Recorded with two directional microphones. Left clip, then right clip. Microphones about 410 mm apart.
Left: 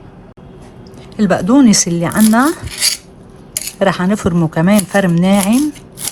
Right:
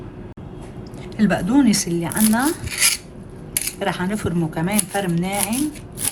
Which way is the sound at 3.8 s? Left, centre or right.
Centre.